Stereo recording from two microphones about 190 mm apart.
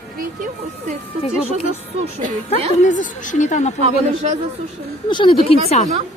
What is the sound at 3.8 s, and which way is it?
Speech, 35° right (ahead or behind).